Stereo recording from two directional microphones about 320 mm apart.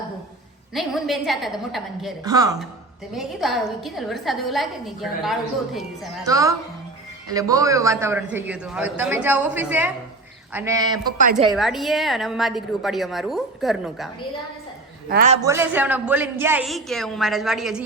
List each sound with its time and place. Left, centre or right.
0.7 s a woman's voice: centre
2.2 s a man's voice: centre
3.2 s a woman's voice: centre
11.5 s a woman's voice: centre
15.1 s a woman's voice: right
15.4 s a woman's voice: centre